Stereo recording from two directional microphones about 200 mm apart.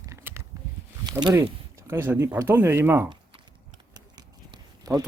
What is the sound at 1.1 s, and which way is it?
Speech, 20° right (ahead or behind).